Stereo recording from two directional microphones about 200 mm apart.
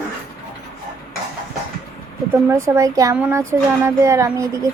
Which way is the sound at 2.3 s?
15° right (ahead or behind).